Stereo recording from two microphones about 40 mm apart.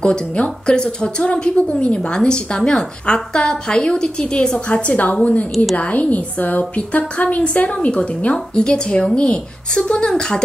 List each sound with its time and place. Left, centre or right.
0.0 s a woman's voice: left
4.8 s a woman's voice: left
8.5 s a woman's voice: centre